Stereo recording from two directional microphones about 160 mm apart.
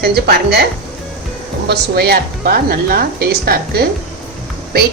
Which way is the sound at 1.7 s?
75° right (ahead or behind).